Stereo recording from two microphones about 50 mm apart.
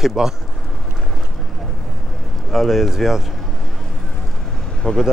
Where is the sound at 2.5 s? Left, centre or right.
Centre.